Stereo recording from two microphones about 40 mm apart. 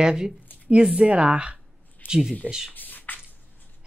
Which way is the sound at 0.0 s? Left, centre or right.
Right.